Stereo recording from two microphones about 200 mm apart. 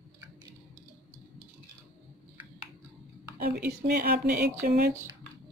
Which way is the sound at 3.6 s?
50° right (ahead or behind).